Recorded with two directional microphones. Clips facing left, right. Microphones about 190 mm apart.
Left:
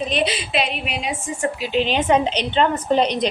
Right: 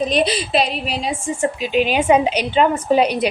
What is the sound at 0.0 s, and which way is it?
A woman's voice, 40° right (ahead or behind).